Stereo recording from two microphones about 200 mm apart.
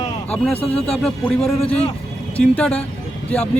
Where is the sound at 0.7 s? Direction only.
5° left (ahead or behind).